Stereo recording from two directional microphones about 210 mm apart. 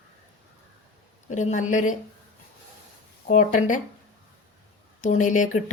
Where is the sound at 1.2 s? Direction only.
35° left (ahead or behind).